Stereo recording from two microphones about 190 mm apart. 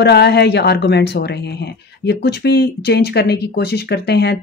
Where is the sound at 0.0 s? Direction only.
60° left (ahead or behind).